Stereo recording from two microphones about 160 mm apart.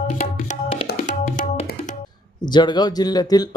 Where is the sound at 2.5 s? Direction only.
25° left (ahead or behind).